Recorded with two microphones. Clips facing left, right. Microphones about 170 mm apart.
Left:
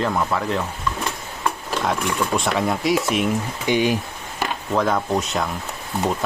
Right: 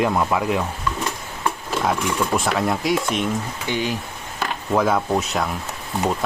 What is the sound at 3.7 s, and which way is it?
Speech, 15° left (ahead or behind).